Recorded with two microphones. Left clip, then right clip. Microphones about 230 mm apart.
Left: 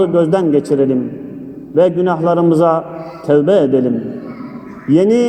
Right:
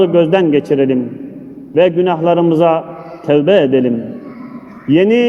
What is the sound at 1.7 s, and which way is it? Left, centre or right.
A man's voice, right.